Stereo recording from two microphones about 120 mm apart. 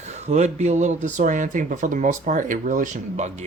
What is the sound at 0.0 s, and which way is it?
Speech, 70° right (ahead or behind).